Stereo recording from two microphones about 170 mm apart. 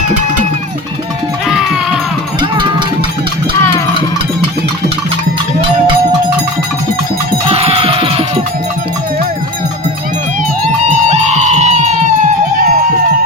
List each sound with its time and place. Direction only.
1.5 s music: 5° right (ahead or behind)
2.4 s music: 30° right (ahead or behind)
7.4 s music: 35° right (ahead or behind)
11.1 s music: 40° right (ahead or behind)